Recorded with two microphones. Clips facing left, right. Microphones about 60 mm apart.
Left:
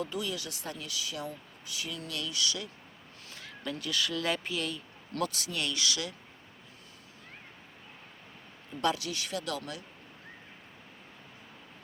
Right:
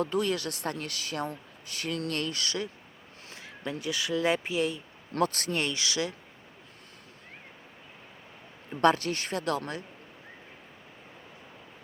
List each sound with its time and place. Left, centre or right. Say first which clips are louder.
0.0 s speech: right 7 dB; right
3.2 s speech: right 2 dB; right
5.3 s speech: right 4 dB; right
8.7 s speech: right 7 dB; right